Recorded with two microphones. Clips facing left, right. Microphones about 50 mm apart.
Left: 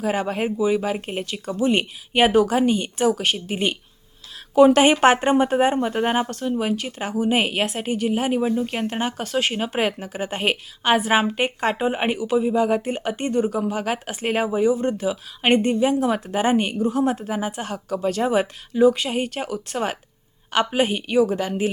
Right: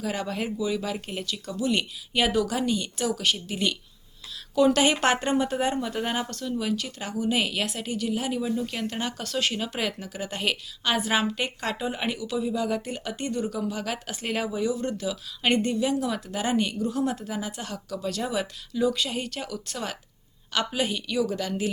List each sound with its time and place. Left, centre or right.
0.0 s speech: left